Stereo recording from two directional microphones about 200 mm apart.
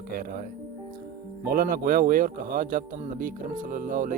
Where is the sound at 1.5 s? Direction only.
45° right (ahead or behind).